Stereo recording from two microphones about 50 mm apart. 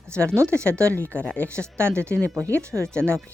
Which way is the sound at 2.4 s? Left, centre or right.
Right.